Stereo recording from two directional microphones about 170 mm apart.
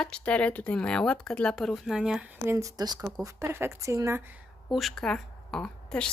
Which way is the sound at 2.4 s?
20° right (ahead or behind).